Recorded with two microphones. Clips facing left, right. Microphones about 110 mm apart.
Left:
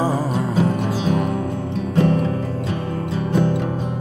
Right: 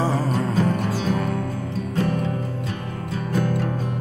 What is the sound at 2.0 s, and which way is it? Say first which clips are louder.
Music: left 6 dB; 30° left (ahead or behind).